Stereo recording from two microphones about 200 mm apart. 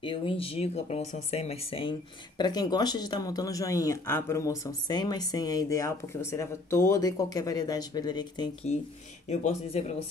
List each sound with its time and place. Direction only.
0.0 s speech: 25° left (ahead or behind)
9.3 s speech: 35° left (ahead or behind)